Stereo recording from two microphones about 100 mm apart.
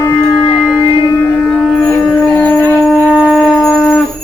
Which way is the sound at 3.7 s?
15° left (ahead or behind).